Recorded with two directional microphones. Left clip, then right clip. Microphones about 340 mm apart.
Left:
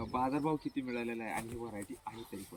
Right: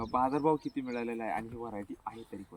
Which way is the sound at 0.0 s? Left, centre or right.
Centre.